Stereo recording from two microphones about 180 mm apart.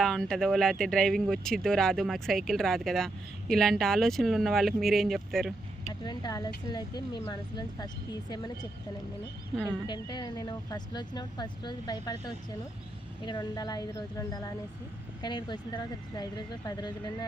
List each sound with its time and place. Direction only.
0.0 s speech: 5° left (ahead or behind)
5.9 s speech: 25° left (ahead or behind)
9.8 s speech: 25° left (ahead or behind)